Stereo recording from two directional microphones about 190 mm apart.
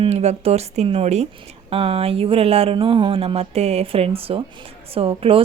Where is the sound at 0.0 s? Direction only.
35° right (ahead or behind).